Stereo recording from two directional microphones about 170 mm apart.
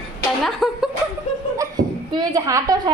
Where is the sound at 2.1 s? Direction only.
20° right (ahead or behind).